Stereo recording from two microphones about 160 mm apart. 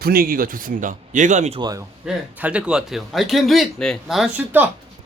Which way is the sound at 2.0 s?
5° right (ahead or behind).